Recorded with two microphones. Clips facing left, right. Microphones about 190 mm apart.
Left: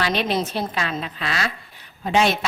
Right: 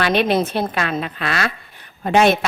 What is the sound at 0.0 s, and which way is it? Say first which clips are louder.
Speech: right 5 dB; 55° right (ahead or behind).